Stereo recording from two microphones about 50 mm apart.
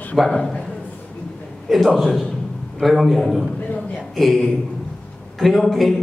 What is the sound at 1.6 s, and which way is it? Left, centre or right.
A man's voice, centre.